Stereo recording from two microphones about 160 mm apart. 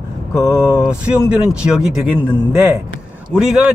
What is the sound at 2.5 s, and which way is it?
Speech, 15° right (ahead or behind).